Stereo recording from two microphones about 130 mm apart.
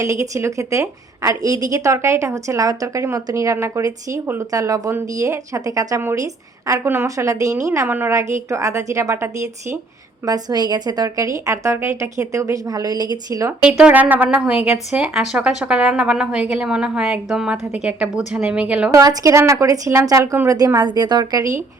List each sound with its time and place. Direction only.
0.0 s a woman's voice: 25° right (ahead or behind)
10.2 s a woman's voice: 30° right (ahead or behind)
13.6 s a woman's voice: 10° right (ahead or behind)
18.9 s a woman's voice: 25° right (ahead or behind)